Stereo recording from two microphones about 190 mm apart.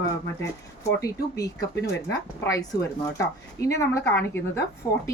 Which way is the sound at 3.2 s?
15° left (ahead or behind).